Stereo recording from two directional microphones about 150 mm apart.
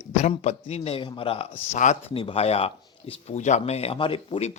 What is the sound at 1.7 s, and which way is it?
Speech, 55° left (ahead or behind).